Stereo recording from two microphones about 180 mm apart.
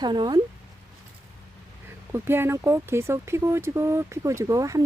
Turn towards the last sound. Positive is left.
turn(degrees=-20)  # may be behind; listen again after turning